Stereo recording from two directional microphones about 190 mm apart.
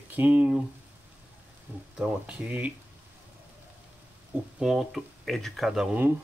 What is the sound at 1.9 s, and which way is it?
Speech, 5° right (ahead or behind).